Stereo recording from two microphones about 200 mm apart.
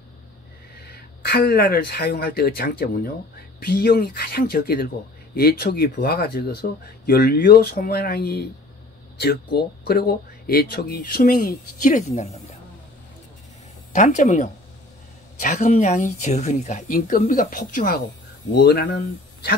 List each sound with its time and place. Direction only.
0.8 s speech: 50° left (ahead or behind)
13.9 s speech: 35° left (ahead or behind); by 18.9 s 50° left (ahead or behind)